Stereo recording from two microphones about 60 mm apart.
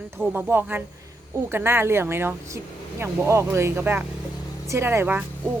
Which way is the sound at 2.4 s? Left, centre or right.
Right.